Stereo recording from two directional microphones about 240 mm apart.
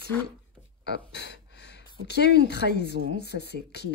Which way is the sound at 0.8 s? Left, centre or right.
Left.